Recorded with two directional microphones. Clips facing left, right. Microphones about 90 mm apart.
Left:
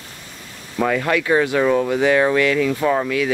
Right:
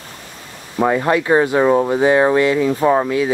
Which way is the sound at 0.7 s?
25° right (ahead or behind).